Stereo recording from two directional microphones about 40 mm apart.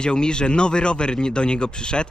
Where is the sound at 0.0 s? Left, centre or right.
Left.